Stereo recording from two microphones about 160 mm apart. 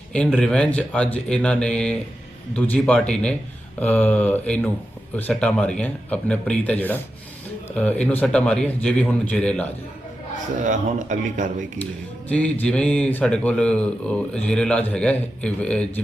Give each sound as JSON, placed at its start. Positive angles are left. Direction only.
{"t": 0.3, "sound": "speech", "side_deg": 5}
{"t": 10.6, "sound": "speech", "side_deg": -50}
{"t": 12.3, "sound": "speech", "side_deg": 10}